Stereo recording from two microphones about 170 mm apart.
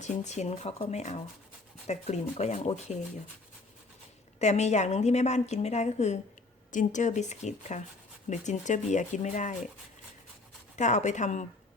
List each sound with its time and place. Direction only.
0.0 s a woman's voice: 45° left (ahead or behind)
4.4 s a woman's voice: 40° left (ahead or behind)
10.8 s speech: 45° left (ahead or behind)